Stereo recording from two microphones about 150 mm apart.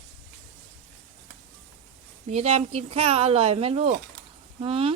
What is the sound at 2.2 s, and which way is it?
Speech, 45° right (ahead or behind).